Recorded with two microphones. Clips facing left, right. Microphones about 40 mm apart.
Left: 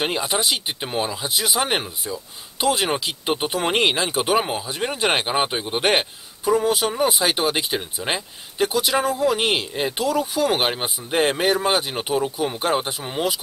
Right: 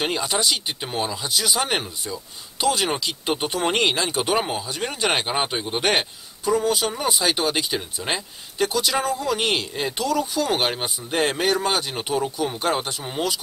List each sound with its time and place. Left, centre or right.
0.0 s speech: centre